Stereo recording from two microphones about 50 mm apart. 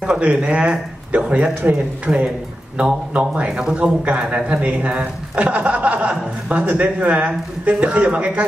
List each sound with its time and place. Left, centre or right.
0.2 s speech: right
1.5 s speech: right
2.0 s speech: right